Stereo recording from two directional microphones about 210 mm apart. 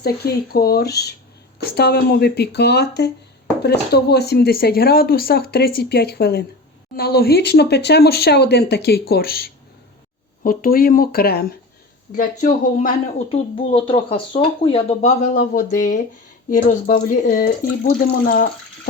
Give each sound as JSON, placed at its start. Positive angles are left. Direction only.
{"t": 0.5, "sound": "speech", "side_deg": 45}
{"t": 13.2, "sound": "speech", "side_deg": 25}